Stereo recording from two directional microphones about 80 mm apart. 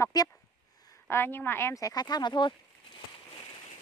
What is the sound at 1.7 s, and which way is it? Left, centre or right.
Speech, left.